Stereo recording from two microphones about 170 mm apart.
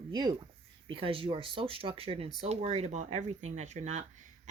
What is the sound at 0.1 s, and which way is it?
Speech, 25° right (ahead or behind).